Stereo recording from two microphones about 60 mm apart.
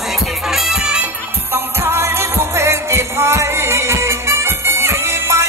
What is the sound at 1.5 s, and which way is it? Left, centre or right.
Music, right.